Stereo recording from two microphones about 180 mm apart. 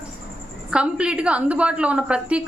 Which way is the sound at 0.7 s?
5° right (ahead or behind).